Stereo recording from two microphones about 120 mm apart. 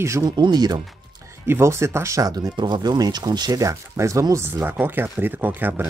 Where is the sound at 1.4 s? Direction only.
20° right (ahead or behind).